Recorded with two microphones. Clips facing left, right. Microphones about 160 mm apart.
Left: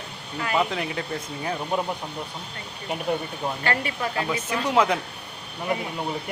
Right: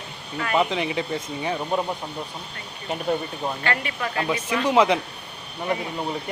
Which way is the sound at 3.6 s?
40° left (ahead or behind).